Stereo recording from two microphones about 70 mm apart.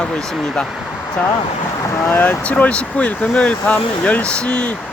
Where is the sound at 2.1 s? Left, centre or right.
Left.